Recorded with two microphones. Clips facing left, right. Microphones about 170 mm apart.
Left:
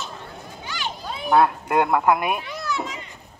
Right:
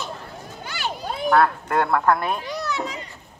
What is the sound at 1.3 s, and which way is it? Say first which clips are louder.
Speech: left 1 dB; 15° left (ahead or behind).